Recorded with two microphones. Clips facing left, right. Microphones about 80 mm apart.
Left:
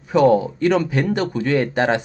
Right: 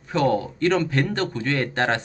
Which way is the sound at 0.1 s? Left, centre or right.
Centre.